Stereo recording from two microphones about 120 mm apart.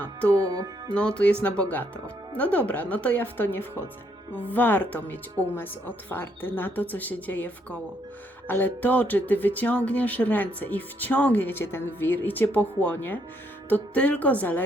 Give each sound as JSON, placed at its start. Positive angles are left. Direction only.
{"t": 0.4, "sound": "music", "side_deg": -30}
{"t": 0.9, "sound": "speech", "side_deg": 10}